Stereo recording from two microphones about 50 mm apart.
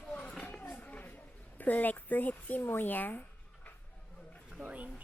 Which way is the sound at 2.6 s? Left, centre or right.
Left.